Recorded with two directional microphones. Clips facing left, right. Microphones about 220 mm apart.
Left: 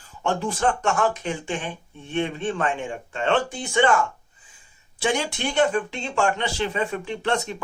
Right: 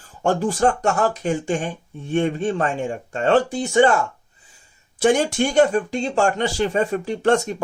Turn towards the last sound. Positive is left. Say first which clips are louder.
# right 7 dB
turn(degrees=-45)  # may be behind; listen again after turning